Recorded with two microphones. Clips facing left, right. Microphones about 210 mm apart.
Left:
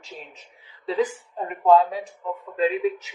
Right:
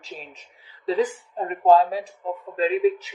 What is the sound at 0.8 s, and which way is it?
Speech, 35° right (ahead or behind).